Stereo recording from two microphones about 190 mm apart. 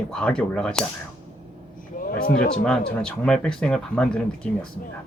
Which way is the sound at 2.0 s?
50° left (ahead or behind).